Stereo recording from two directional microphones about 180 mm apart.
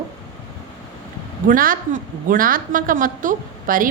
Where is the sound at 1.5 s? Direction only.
50° right (ahead or behind).